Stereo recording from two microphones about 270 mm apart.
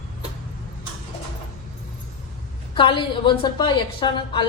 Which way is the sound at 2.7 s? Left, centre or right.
Centre.